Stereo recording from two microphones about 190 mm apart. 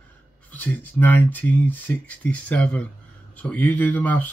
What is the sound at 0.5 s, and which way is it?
Speech, 10° left (ahead or behind).